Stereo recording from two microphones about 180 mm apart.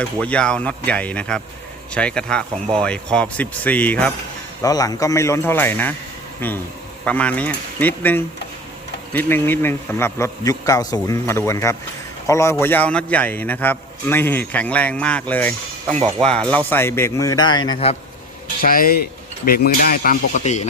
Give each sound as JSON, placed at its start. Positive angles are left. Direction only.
{"t": 0.0, "sound": "a man's voice", "side_deg": 5}
{"t": 4.6, "sound": "a man's voice", "side_deg": 20}
{"t": 18.6, "sound": "speech", "side_deg": 50}